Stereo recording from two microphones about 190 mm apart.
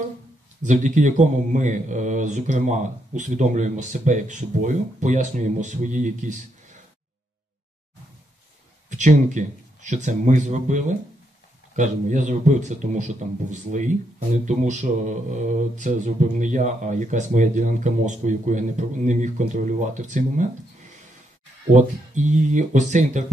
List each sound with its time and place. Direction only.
0.6 s speech: 40° right (ahead or behind)
8.8 s a man's voice: 40° right (ahead or behind)
21.7 s speech: 40° right (ahead or behind)